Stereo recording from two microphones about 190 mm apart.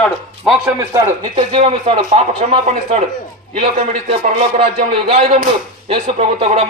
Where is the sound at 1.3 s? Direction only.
30° right (ahead or behind).